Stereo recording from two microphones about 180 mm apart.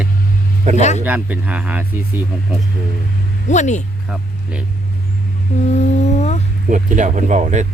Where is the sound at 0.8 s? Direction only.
40° left (ahead or behind).